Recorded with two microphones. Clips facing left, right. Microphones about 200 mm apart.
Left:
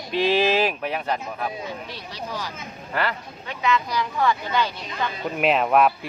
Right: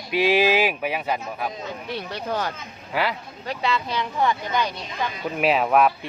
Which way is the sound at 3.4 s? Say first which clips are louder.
Left 1 dB; 30° right (ahead or behind).